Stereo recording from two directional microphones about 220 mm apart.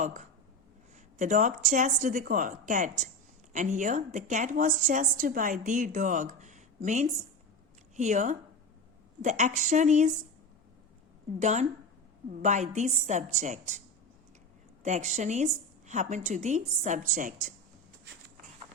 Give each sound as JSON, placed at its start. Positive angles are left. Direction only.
{"t": 0.0, "sound": "a woman's voice", "side_deg": -35}
{"t": 11.3, "sound": "a woman's voice", "side_deg": -30}
{"t": 14.8, "sound": "a woman's voice", "side_deg": -30}